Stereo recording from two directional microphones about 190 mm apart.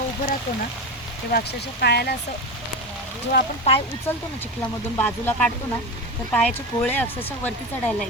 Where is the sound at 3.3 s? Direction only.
60° left (ahead or behind).